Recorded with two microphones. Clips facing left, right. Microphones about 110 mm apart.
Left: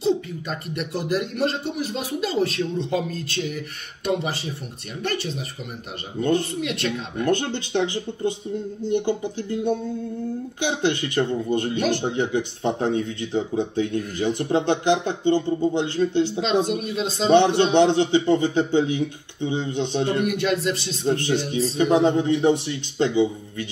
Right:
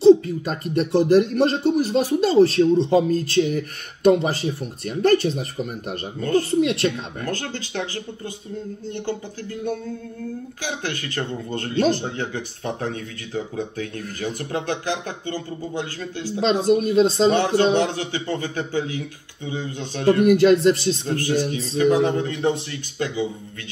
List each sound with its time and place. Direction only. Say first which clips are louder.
0.0 s speech: right 10 dB; 40° right (ahead or behind)
6.2 s speech: left 6 dB; 15° left (ahead or behind)
6.6 s speech: right 5 dB; 40° right (ahead or behind)
7.2 s speech: left 7 dB; 25° left (ahead or behind)
16.3 s speech: right 3 dB; 40° right (ahead or behind)
17.7 s speech: left 6 dB; 25° left (ahead or behind)
20.2 s speech: right 8 dB; 40° right (ahead or behind)
21.1 s speech: left 3 dB; 25° left (ahead or behind)